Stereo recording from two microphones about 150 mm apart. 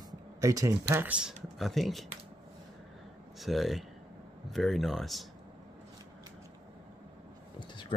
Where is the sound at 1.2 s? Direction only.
Centre (ahead or behind).